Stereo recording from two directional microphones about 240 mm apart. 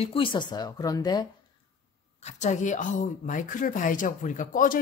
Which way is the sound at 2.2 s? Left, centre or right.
Left.